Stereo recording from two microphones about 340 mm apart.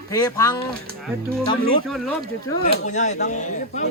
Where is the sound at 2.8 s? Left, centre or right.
Left.